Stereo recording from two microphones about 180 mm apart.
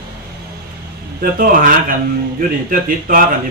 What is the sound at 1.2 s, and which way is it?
Speech, 50° right (ahead or behind).